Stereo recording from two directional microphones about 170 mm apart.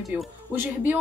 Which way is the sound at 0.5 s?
10° right (ahead or behind).